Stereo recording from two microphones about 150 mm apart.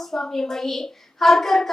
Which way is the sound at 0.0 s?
Centre (ahead or behind).